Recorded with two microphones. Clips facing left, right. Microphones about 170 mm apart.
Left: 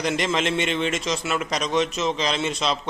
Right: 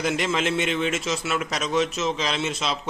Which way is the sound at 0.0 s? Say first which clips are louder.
Left 1 dB; 5° right (ahead or behind).